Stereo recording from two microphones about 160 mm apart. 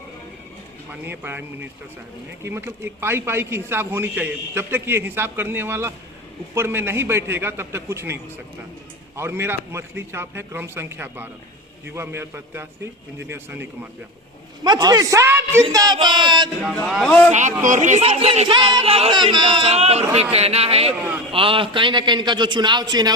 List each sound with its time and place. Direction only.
1.0 s a man's voice: 10° right (ahead or behind)
14.6 s a man's voice: 25° right (ahead or behind)
16.7 s speech: centre (ahead or behind)
17.3 s a man's voice: 50° right (ahead or behind); by 23.1 s 25° right (ahead or behind)